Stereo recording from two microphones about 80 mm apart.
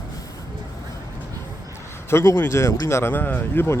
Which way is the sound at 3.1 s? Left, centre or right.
Left.